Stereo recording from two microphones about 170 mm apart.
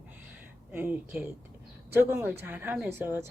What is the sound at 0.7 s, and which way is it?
Speech, 10° right (ahead or behind).